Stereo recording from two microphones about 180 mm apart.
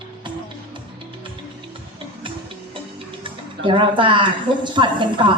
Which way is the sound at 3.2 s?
30° right (ahead or behind).